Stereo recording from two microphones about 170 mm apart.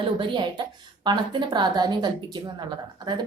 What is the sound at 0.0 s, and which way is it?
A woman's voice, 30° right (ahead or behind).